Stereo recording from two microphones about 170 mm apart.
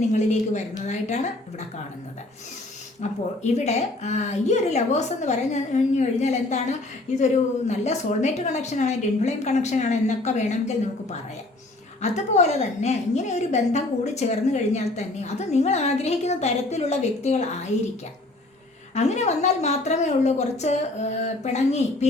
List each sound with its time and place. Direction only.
0.1 s a woman's voice: 45° left (ahead or behind)
3.0 s a woman's voice: 40° left (ahead or behind)
12.0 s a woman's voice: 40° left (ahead or behind)
18.9 s a woman's voice: 40° left (ahead or behind)